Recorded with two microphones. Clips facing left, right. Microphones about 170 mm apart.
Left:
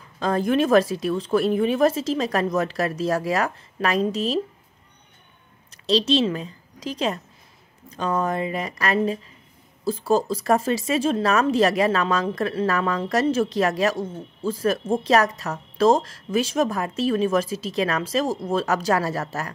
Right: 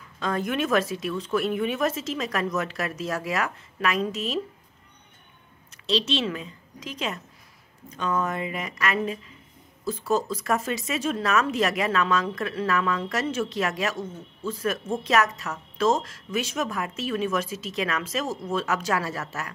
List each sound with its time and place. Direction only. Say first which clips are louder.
0.2 s speech: left 6 dB; 35° left (ahead or behind)
5.9 s speech: left 6 dB; 40° left (ahead or behind)